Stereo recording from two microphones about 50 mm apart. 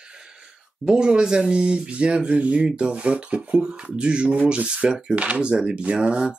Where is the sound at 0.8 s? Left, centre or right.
Centre.